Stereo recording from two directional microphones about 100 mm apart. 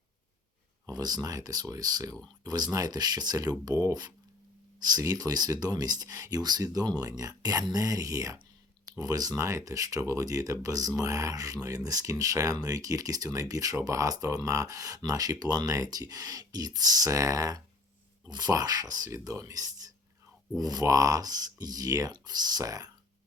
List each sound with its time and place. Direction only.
0.9 s speech: 40° right (ahead or behind)